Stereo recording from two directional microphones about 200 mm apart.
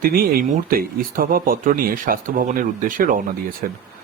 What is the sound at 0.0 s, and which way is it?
Speech, 50° right (ahead or behind).